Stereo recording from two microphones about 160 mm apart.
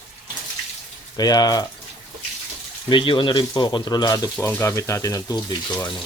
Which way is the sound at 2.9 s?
30° left (ahead or behind).